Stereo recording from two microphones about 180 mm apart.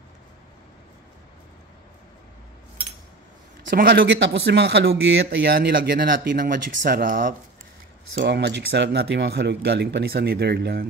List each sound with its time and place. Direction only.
3.7 s speech: 60° right (ahead or behind)
8.2 s speech: 75° right (ahead or behind)